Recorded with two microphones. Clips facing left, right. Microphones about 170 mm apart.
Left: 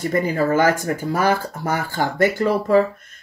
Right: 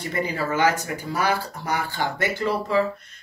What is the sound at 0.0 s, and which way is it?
Speech, 45° left (ahead or behind).